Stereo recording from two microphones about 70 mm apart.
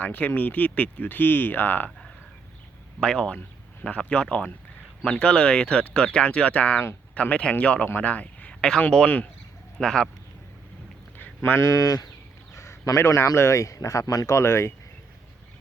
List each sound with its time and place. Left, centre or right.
0.0 s speech: left
3.0 s a man's voice: centre
9.7 s speech: centre
11.6 s speech: left